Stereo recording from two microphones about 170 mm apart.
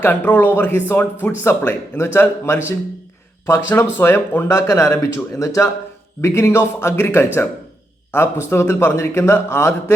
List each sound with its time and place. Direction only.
0.0 s a man's voice: 10° left (ahead or behind)